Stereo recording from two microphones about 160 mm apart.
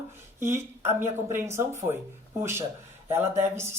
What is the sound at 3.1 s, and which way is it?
Speech, 15° right (ahead or behind).